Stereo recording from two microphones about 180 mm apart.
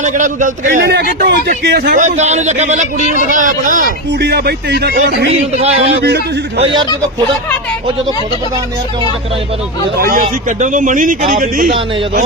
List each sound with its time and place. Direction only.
0.0 s a man's voice: 45° right (ahead or behind); by 2.0 s 60° right (ahead or behind)
2.0 s a man's voice: 40° right (ahead or behind); by 5.3 s 75° right (ahead or behind)
5.5 s a man's voice: 40° right (ahead or behind)
5.9 s a man's voice: 65° right (ahead or behind)
10.0 s a man's voice: 50° right (ahead or behind)